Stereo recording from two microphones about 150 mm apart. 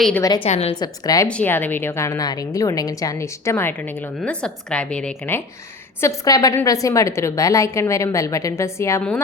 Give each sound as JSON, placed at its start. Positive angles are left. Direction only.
{"t": 0.4, "sound": "a woman's voice", "side_deg": 50}
{"t": 0.8, "sound": "a woman's voice", "side_deg": 25}
{"t": 1.3, "sound": "a woman's voice", "side_deg": 10}
{"t": 6.0, "sound": "a woman's voice", "side_deg": 20}